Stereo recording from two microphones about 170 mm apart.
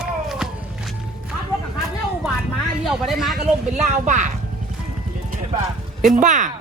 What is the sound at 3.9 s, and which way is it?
Speech, 45° right (ahead or behind).